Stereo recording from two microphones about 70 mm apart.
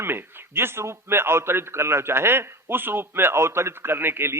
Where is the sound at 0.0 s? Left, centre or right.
Right.